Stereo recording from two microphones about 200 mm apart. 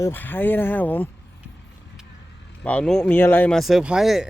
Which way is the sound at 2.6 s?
5° left (ahead or behind).